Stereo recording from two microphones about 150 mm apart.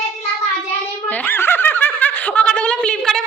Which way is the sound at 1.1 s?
10° left (ahead or behind).